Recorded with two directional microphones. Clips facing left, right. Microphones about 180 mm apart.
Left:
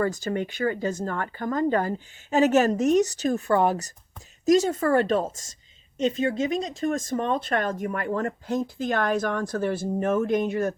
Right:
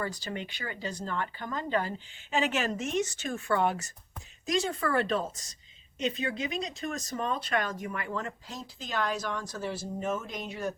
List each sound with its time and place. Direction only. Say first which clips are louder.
0.0 s speech: left 9 dB; 45° left (ahead or behind)